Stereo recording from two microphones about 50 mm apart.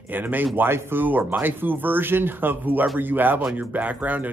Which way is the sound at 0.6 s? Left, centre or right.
Right.